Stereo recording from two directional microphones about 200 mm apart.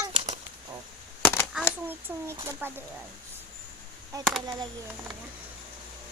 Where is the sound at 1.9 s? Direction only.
10° right (ahead or behind).